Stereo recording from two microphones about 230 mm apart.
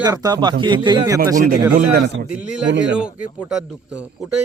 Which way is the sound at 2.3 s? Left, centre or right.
Centre.